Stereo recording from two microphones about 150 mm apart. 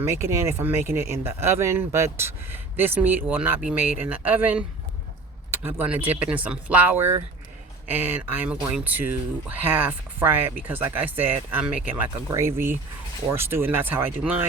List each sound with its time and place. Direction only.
0.0 s speech: 20° right (ahead or behind)